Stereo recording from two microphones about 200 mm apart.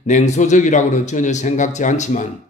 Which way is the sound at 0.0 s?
35° left (ahead or behind).